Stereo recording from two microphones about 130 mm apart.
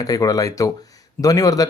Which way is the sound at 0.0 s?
25° left (ahead or behind).